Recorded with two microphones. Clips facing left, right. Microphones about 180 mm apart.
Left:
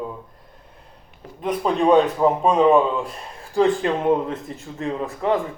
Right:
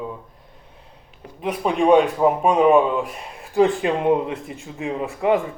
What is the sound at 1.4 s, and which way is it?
A man's voice, 10° right (ahead or behind).